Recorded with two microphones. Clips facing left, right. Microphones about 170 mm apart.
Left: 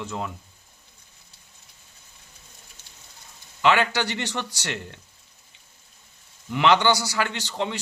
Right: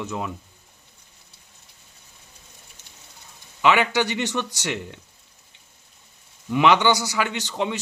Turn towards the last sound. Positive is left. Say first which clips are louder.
# right 2 dB
turn(degrees=-15)  # may be behind; listen again after turning